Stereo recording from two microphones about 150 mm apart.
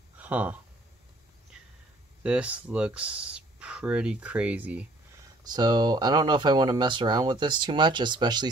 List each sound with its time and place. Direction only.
0.2 s speech: 10° right (ahead or behind)
2.2 s speech: 10° right (ahead or behind)
5.4 s speech: 30° right (ahead or behind)